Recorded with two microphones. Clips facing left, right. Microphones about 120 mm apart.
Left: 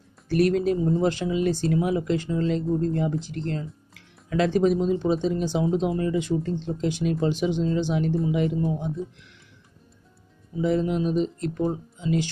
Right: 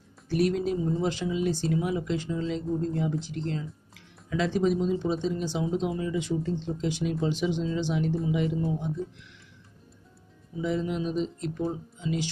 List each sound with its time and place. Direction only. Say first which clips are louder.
0.3 s speech: left 4 dB; 65° left (ahead or behind)
10.6 s speech: left 5 dB; 55° left (ahead or behind)